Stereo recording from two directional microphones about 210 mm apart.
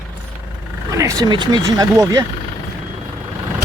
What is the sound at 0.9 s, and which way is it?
Speech, 15° right (ahead or behind).